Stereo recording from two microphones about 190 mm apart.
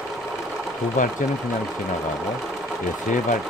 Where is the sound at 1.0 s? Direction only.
45° left (ahead or behind).